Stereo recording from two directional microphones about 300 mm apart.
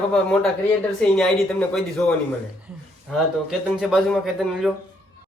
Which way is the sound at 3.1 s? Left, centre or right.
Centre.